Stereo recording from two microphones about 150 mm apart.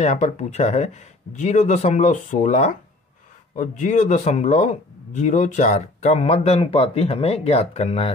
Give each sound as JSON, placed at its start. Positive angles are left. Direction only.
{"t": 0.0, "sound": "speech", "side_deg": 50}